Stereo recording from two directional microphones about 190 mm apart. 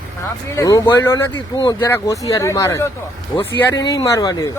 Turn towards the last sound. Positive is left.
turn(degrees=20)  # may be behind; listen again after turning